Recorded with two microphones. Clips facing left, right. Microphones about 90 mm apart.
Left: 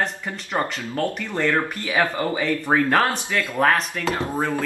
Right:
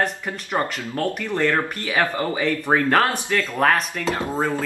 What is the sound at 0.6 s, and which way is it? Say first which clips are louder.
Speech: left 1 dB; 5° left (ahead or behind).